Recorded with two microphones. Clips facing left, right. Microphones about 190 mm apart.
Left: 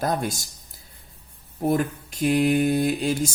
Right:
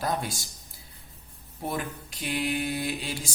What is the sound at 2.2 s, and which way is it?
Speech, 45° left (ahead or behind).